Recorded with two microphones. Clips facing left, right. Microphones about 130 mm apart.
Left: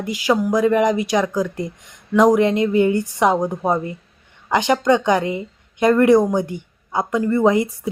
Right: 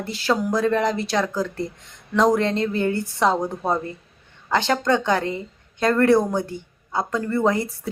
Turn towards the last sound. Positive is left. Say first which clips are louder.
# left 5 dB
turn(degrees=15)  # may be behind; listen again after turning